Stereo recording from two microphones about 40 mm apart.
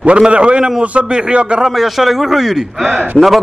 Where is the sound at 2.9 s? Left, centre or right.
Right.